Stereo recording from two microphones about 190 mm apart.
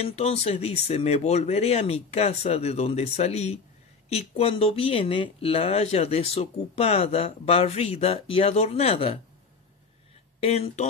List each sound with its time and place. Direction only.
0.0 s speech: 35° left (ahead or behind)
10.4 s speech: 35° left (ahead or behind)